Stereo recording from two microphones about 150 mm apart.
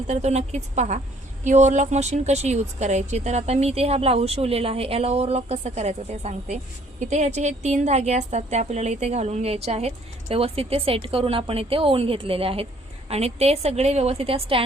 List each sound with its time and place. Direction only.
0.1 s a woman's voice: 45° right (ahead or behind)